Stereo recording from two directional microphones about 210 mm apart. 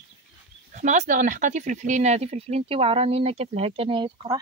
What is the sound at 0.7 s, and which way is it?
Speech, 35° right (ahead or behind).